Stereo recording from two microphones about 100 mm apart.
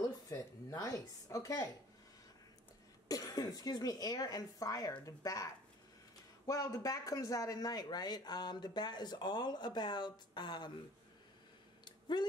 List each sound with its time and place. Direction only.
0.0 s a woman's voice: 35° left (ahead or behind)
3.1 s speech: 40° left (ahead or behind)
11.8 s a sound: 50° left (ahead or behind)